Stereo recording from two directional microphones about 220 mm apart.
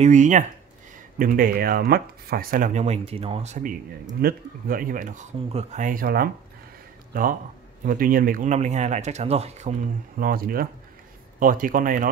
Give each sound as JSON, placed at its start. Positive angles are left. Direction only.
{"t": 0.0, "sound": "speech", "side_deg": -35}